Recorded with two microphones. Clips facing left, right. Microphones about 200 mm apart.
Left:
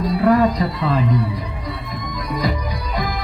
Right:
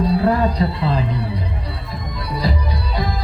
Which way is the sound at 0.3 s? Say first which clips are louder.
Left 2 dB; 30° right (ahead or behind).